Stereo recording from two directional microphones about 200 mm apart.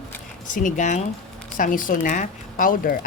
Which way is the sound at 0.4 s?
40° left (ahead or behind).